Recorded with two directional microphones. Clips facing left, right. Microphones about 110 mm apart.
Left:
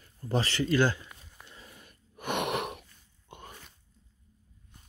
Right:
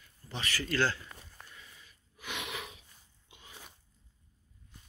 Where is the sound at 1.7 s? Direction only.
55° left (ahead or behind).